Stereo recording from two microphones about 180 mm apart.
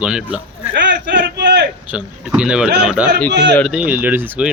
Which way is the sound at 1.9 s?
5° right (ahead or behind).